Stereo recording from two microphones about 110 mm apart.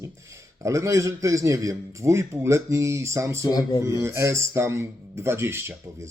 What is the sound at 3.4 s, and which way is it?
Speech, 35° left (ahead or behind).